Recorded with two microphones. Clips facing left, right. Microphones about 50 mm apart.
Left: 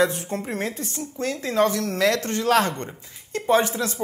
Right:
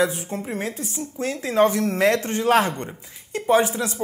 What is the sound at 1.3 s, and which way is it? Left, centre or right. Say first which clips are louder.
Speech: right 3 dB; right.